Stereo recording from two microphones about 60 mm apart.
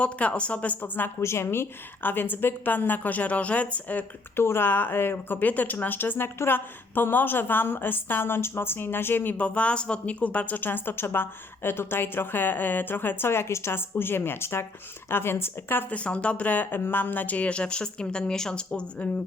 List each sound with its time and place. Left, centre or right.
0.0 s speech: left
1.2 s speech: left
4.4 s speech: left
9.4 s speech: left
15.9 s a woman's voice: centre